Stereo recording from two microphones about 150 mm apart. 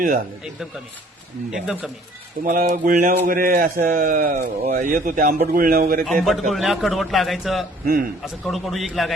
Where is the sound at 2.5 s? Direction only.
65° right (ahead or behind).